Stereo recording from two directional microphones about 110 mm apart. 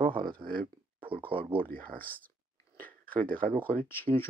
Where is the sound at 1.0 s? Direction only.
50° right (ahead or behind).